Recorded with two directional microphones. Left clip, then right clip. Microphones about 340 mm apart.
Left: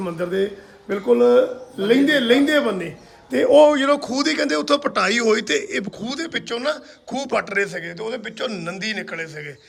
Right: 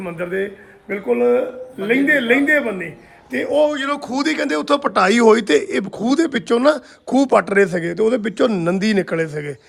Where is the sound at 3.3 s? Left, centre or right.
Centre.